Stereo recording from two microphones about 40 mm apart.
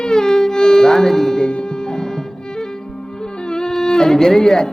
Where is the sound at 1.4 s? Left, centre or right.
Left.